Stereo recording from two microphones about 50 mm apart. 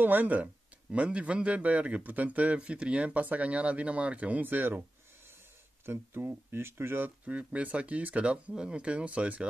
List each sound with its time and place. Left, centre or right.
0.0 s a man's voice: right
5.9 s speech: right
7.2 s a man's voice: right